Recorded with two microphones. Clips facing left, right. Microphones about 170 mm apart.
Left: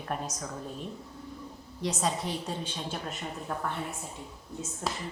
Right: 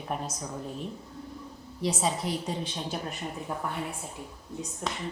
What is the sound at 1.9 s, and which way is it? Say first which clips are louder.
A woman's voice: right 2 dB; 5° right (ahead or behind).